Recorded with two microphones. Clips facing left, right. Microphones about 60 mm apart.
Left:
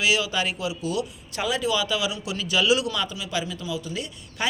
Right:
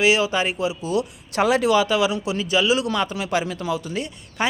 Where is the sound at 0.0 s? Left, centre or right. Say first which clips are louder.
Right 5 dB; right.